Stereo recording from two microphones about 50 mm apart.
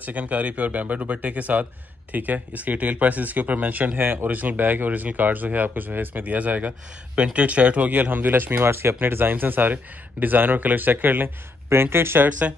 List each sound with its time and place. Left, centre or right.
0.0 s speech: right
8.6 s speech: right
11.7 s speech: right
12.3 s speech: right